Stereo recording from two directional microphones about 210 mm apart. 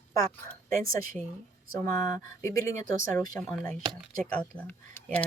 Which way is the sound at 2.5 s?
15° left (ahead or behind).